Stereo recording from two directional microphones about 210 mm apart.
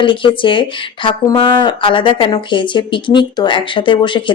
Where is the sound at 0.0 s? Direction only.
25° left (ahead or behind).